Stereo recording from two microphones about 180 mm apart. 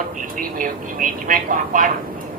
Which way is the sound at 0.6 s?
50° right (ahead or behind).